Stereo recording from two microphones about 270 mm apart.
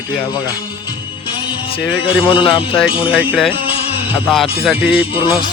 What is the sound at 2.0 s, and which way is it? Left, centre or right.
A man's voice, centre.